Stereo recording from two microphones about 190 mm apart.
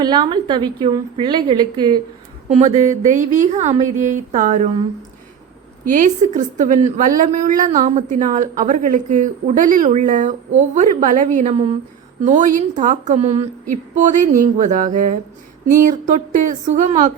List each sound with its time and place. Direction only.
0.0 s a woman's voice: 25° right (ahead or behind)
2.6 s a woman's voice: 35° right (ahead or behind)
5.8 s a woman's voice: 45° right (ahead or behind)